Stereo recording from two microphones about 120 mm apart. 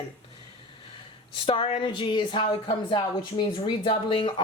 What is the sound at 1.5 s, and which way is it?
A woman's voice, 45° left (ahead or behind).